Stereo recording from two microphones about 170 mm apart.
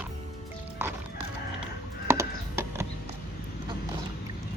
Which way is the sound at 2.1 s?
15° right (ahead or behind).